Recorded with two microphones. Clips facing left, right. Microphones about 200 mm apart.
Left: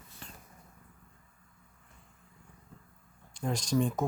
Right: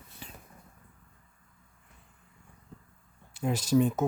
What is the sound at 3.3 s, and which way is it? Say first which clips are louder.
Speech: right 5 dB; 5° right (ahead or behind).